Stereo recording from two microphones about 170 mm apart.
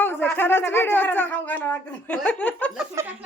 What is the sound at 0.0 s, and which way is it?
Speech, 10° left (ahead or behind).